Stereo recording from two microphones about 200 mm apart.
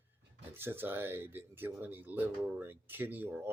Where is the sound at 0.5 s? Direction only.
10° right (ahead or behind).